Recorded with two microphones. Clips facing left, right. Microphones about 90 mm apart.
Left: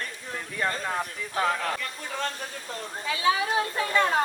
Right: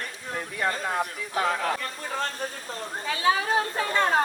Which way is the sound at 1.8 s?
40° right (ahead or behind).